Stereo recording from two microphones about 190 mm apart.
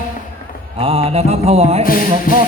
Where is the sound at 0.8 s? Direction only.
30° right (ahead or behind).